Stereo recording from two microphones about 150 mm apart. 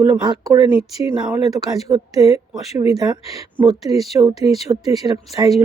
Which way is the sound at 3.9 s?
20° right (ahead or behind).